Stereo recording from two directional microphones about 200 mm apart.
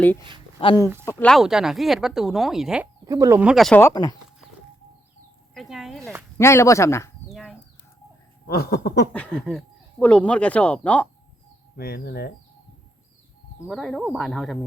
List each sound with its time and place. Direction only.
0.6 s speech: 25° left (ahead or behind)
1.0 s speech: 5° left (ahead or behind)
3.0 s speech: 20° right (ahead or behind)
3.4 s speech: centre (ahead or behind)
3.8 s speech: 15° left (ahead or behind)
5.5 s speech: centre (ahead or behind)
6.3 s speech: 15° left (ahead or behind)
7.3 s a sound: centre (ahead or behind)
8.4 s a sound: 50° left (ahead or behind)
9.1 s speech: centre (ahead or behind)
11.8 s a sound: 50° left (ahead or behind)
13.6 s speech: centre (ahead or behind)